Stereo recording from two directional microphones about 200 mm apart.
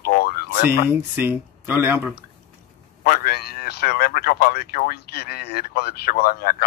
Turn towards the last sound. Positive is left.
turn(degrees=50)  # may be behind; listen again after turning